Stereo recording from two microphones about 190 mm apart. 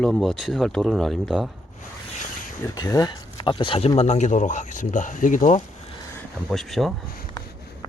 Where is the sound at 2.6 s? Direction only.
20° left (ahead or behind); by 5.6 s 45° left (ahead or behind).